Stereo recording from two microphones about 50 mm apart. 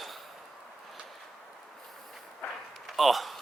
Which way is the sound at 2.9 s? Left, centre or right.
Centre.